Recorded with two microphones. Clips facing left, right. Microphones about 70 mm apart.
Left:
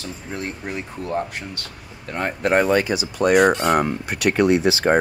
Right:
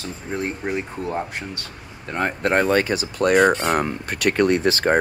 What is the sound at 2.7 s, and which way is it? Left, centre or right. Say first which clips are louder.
Speech: even; right.